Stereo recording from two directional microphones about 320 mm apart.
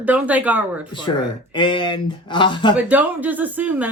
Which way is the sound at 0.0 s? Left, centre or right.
Centre.